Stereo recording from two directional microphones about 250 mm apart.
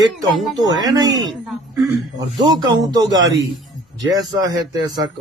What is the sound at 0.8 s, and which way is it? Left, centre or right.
Speech, centre.